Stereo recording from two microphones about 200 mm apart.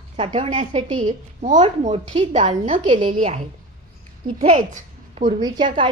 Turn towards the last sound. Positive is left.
turn(degrees=-25)  # may be behind; listen again after turning